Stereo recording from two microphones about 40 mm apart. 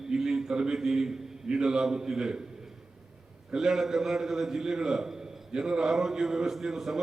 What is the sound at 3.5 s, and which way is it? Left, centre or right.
A man's voice, centre.